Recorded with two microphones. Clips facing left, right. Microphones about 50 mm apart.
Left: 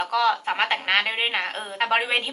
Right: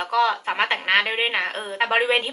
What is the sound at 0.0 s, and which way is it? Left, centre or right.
Speech, centre.